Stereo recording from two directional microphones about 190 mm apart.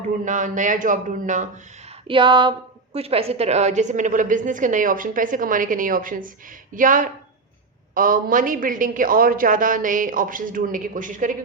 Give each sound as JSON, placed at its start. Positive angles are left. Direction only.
{"t": 0.3, "sound": "a man's voice", "side_deg": -40}
{"t": 2.0, "sound": "a woman's voice", "side_deg": -25}